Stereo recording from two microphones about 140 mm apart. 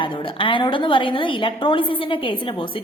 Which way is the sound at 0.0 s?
35° left (ahead or behind).